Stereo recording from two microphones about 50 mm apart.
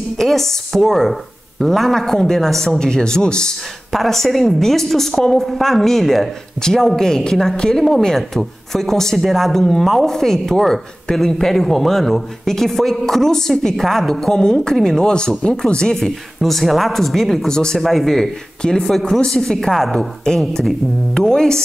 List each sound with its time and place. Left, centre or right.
0.2 s speech: centre
3.9 s speech: centre
16.3 s speech: centre
17.7 s speech: centre